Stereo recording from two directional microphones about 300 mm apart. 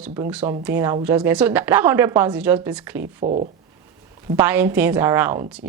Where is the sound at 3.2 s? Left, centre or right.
Right.